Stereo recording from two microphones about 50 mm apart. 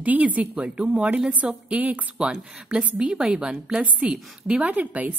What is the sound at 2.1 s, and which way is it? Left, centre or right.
A woman's voice, centre.